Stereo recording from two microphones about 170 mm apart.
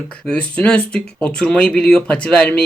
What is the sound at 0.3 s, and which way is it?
Speech, 5° left (ahead or behind).